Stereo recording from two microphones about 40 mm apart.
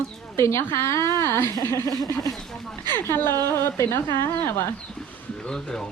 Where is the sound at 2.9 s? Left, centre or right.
Left.